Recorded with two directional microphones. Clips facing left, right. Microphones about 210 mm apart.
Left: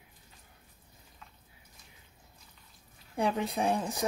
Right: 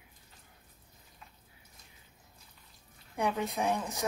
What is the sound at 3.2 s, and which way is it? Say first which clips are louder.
Speech: left 2 dB; 30° left (ahead or behind).